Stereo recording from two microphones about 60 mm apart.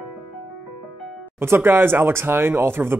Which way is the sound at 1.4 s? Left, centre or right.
Right.